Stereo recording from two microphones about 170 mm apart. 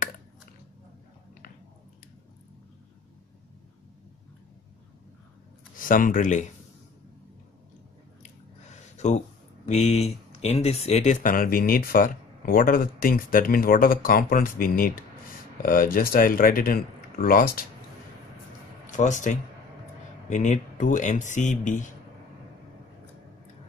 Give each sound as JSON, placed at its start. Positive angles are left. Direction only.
{"t": 5.8, "sound": "speech", "side_deg": 55}
{"t": 8.2, "sound": "a sound", "side_deg": 45}
{"t": 9.7, "sound": "speech", "side_deg": 40}
{"t": 18.9, "sound": "speech", "side_deg": 45}